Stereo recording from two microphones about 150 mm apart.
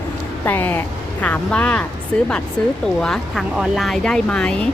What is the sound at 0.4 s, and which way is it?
Speech, 15° left (ahead or behind).